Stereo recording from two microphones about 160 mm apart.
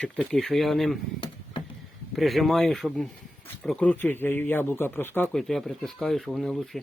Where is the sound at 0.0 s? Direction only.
5° left (ahead or behind).